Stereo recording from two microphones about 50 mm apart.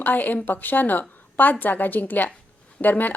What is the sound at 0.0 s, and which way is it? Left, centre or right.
A woman's voice, left.